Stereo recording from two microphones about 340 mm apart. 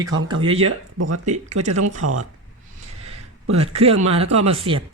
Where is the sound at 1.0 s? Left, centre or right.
Right.